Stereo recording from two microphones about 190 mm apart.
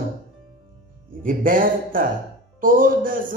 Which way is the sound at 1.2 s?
45° right (ahead or behind).